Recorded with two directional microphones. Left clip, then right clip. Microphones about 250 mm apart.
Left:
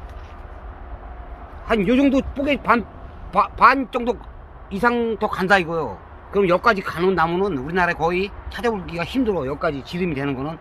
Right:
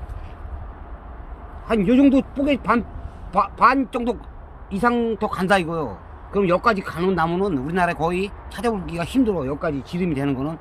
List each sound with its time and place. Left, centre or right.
1.7 s a man's voice: centre